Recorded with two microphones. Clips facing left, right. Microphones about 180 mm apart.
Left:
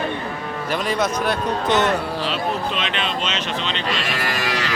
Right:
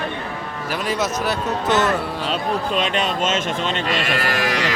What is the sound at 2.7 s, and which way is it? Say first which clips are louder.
Speech: right 4 dB; 45° right (ahead or behind).